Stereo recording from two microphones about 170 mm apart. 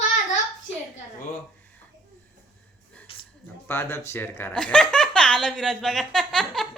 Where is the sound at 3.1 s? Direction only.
30° left (ahead or behind).